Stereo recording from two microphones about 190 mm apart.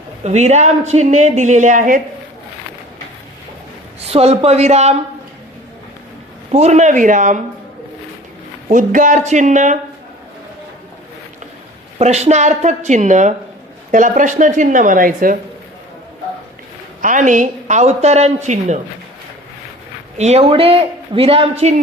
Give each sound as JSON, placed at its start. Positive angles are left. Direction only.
{"t": 0.3, "sound": "a woman's voice", "side_deg": -35}
{"t": 4.1, "sound": "a woman's voice", "side_deg": -30}
{"t": 6.5, "sound": "a woman's voice", "side_deg": -35}
{"t": 8.7, "sound": "a woman's voice", "side_deg": -45}
{"t": 11.9, "sound": "a woman's voice", "side_deg": -35}
{"t": 17.0, "sound": "a woman's voice", "side_deg": -40}
{"t": 20.1, "sound": "a woman's voice", "side_deg": -35}